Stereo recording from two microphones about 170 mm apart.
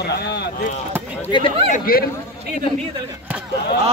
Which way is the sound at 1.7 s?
55° left (ahead or behind).